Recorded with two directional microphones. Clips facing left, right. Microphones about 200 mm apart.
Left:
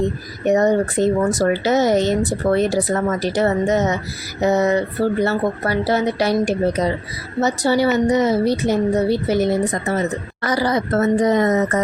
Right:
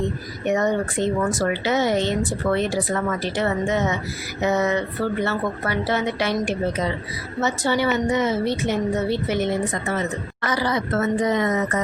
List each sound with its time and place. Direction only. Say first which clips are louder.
0.4 s speech: left 5 dB; 35° left (ahead or behind)